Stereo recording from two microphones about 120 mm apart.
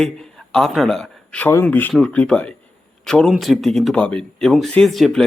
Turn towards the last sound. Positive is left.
turn(degrees=0)  # may be behind; listen again after turning